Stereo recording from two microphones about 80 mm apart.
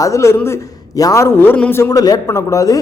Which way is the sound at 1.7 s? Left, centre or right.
Left.